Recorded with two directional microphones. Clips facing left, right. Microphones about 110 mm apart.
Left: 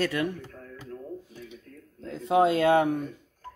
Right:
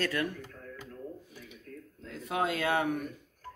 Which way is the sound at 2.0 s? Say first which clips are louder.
Left 10 dB; 30° left (ahead or behind).